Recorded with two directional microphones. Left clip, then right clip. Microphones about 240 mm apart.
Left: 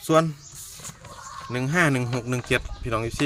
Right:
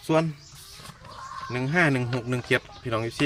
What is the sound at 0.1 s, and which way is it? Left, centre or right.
Speech, centre.